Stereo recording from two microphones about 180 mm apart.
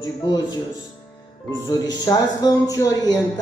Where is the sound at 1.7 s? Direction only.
20° left (ahead or behind).